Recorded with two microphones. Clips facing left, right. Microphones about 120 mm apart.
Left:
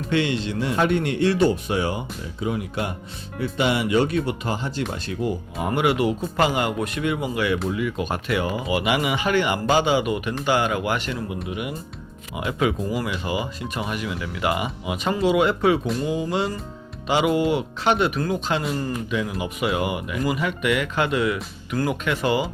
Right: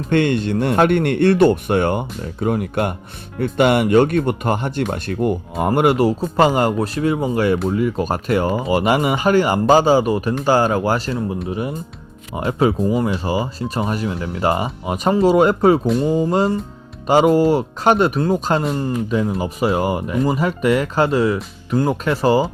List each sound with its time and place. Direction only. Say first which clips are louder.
0.1 s a man's voice: right 6 dB; 55° right (ahead or behind); by 22.4 s 35° right (ahead or behind)